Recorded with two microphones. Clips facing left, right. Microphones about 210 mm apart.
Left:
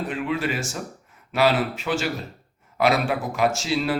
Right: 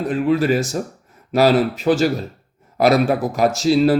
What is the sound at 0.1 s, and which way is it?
Speech, 40° right (ahead or behind).